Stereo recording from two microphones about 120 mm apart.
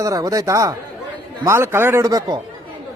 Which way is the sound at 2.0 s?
30° right (ahead or behind).